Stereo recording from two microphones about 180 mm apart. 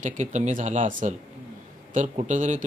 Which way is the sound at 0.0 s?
40° right (ahead or behind).